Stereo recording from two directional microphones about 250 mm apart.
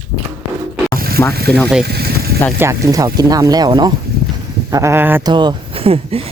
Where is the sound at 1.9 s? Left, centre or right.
Right.